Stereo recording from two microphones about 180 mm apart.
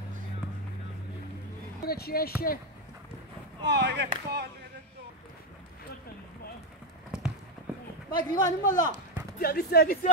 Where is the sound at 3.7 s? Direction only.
70° right (ahead or behind).